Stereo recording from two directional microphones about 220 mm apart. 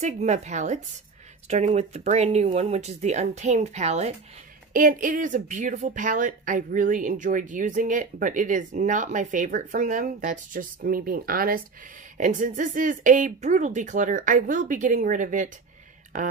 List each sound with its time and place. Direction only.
0.0 s speech: 30° right (ahead or behind)